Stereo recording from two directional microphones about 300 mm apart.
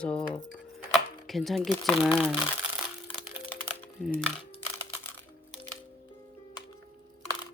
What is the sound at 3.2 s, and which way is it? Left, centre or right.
Music, centre.